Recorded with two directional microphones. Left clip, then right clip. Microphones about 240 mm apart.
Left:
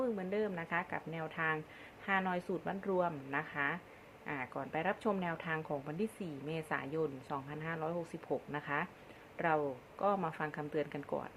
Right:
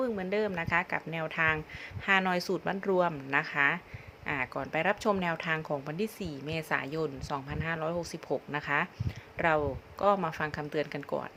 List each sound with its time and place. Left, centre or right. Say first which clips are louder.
0.0 s speech: right 6 dB; centre